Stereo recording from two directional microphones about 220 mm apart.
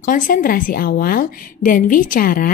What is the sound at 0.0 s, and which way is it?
A woman's voice, 40° left (ahead or behind).